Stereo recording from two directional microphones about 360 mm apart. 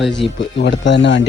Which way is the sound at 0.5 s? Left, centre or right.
Left.